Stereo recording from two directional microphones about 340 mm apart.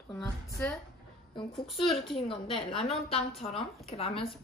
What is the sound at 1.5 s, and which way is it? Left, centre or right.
Speech, centre.